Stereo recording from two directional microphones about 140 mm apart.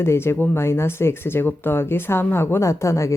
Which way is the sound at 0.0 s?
20° left (ahead or behind).